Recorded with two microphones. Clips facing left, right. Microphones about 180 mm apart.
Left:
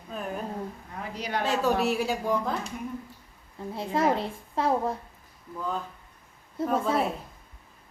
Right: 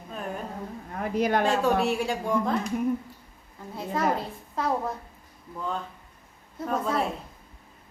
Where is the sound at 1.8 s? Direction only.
Centre (ahead or behind).